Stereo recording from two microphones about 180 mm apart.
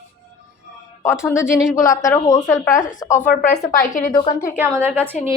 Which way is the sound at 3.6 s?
50° left (ahead or behind).